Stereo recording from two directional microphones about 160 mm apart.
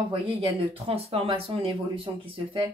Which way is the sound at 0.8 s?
40° right (ahead or behind).